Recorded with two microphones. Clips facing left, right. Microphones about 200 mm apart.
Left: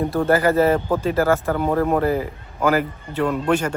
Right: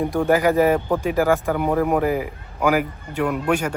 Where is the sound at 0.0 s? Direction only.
15° right (ahead or behind).